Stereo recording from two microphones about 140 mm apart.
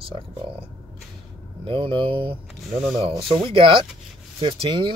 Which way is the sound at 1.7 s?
35° right (ahead or behind).